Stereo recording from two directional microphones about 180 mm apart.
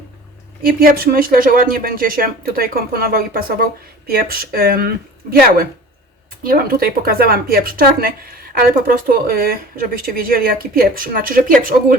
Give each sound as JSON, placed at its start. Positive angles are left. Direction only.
{"t": 0.6, "sound": "speech", "side_deg": -55}